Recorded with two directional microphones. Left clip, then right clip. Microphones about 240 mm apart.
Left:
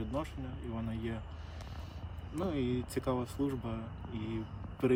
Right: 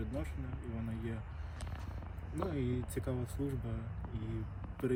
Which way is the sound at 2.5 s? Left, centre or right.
Left.